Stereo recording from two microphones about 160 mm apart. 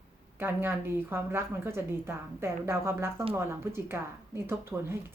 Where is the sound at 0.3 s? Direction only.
15° right (ahead or behind).